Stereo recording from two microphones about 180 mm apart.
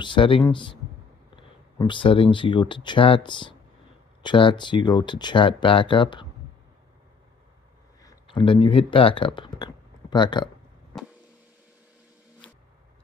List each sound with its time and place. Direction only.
0.0 s speech: 25° left (ahead or behind)
8.0 s speech: 30° left (ahead or behind)